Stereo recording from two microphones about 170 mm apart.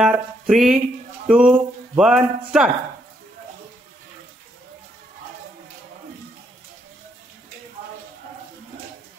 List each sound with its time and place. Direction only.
0.0 s speech: centre (ahead or behind)